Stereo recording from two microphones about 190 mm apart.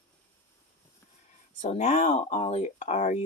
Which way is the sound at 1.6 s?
35° left (ahead or behind).